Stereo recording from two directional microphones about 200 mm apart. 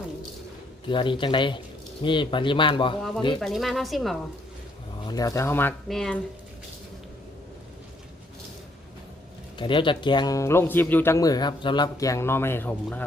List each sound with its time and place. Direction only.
0.9 s speech: 25° left (ahead or behind)
3.4 s a woman's voice: centre (ahead or behind)
5.0 s speech: 20° left (ahead or behind); by 6.2 s 5° left (ahead or behind)
9.6 s speech: 25° left (ahead or behind)